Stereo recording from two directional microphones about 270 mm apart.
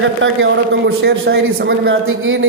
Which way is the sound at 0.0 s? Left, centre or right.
Right.